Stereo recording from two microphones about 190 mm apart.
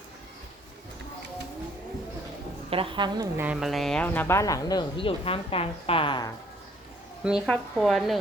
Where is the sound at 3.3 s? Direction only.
5° right (ahead or behind); by 6.2 s 25° left (ahead or behind).